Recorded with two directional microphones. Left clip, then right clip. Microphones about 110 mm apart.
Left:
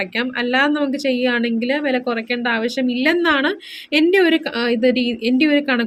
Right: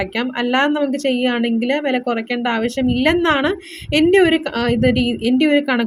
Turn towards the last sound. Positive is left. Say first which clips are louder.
# right 1 dB
turn(degrees=-30)  # may be behind; listen again after turning